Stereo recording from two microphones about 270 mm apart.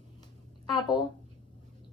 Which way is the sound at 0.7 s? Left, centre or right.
Centre.